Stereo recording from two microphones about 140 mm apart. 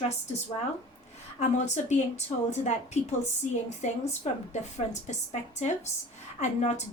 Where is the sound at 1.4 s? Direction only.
55° left (ahead or behind).